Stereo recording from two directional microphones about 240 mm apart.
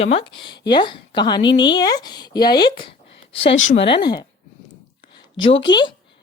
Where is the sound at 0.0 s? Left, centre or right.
Left.